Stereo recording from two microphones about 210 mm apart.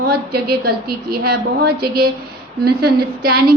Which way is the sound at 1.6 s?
50° right (ahead or behind).